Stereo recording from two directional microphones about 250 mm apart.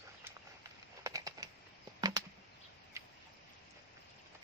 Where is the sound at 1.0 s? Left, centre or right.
Centre.